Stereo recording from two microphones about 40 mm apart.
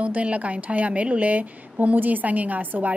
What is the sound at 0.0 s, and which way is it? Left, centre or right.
Speech, right.